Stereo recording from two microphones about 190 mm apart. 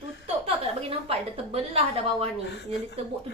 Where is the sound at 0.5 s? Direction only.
30° right (ahead or behind).